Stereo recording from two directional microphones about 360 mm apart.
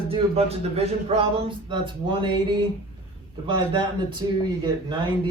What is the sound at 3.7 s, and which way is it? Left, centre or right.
Speech, centre.